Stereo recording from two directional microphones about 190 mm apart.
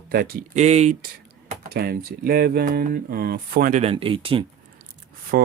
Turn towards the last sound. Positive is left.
turn(degrees=-50)  # may be behind; listen again after turning